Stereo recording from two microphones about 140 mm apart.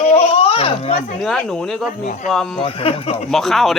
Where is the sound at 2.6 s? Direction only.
45° left (ahead or behind).